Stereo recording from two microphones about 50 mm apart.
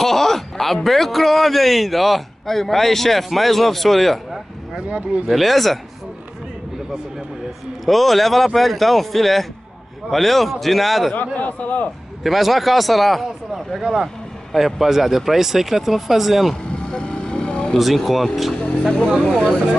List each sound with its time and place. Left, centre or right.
0.0 s a man's voice: centre
4.7 s speech: right
5.3 s a man's voice: centre
7.8 s a man's voice: centre
11.3 s a man's voice: left
12.2 s a man's voice: centre
16.9 s vehicle: centre
17.7 s a man's voice: centre